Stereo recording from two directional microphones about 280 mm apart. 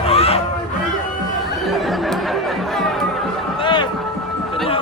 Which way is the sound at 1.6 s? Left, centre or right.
Centre.